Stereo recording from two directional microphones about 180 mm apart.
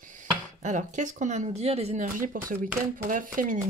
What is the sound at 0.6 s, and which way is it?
Speech, 45° right (ahead or behind).